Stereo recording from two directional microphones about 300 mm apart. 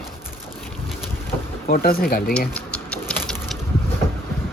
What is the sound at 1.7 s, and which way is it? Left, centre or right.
Speech, left.